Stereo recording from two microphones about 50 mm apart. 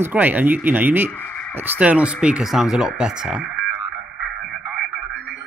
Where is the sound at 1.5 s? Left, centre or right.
Right.